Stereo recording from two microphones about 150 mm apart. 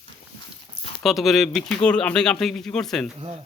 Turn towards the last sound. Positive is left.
turn(degrees=-40)  # may be behind; listen again after turning